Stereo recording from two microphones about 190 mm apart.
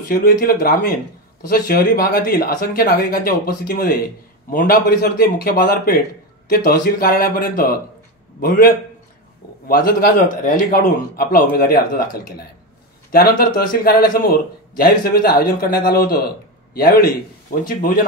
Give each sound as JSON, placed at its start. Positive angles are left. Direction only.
{"t": 0.1, "sound": "speech", "side_deg": 50}
{"t": 9.7, "sound": "speech", "side_deg": 50}
{"t": 13.1, "sound": "speech", "side_deg": 50}